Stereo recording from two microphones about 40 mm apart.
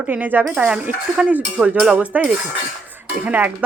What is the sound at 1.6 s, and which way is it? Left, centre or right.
Speech, centre.